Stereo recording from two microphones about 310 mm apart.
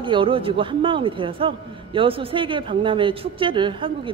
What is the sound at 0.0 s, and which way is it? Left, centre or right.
A man's voice, centre.